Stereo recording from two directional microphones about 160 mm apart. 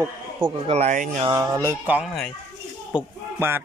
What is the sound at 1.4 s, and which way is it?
A man's voice, 15° right (ahead or behind).